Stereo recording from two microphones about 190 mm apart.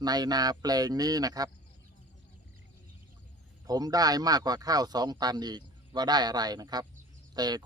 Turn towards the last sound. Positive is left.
turn(degrees=-20)  # may be behind; listen again after turning